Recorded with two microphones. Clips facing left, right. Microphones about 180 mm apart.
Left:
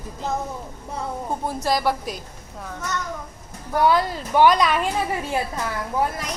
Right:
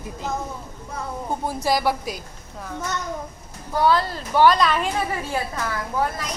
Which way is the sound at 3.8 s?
15° left (ahead or behind).